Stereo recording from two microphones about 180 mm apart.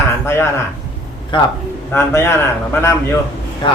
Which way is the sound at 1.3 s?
25° left (ahead or behind).